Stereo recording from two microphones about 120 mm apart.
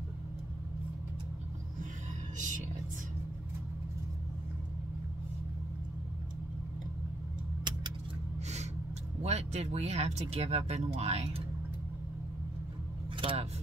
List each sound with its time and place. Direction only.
2.3 s music: 90° right
9.2 s speech: 65° right (ahead or behind)
13.2 s vehicle: 50° right (ahead or behind)